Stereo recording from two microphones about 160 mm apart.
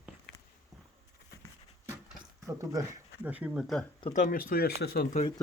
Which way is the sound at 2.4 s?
20° right (ahead or behind).